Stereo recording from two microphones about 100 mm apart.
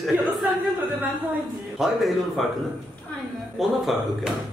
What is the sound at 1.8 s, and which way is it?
Speech, centre (ahead or behind).